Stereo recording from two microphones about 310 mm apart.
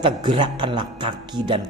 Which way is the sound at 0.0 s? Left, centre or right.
Centre.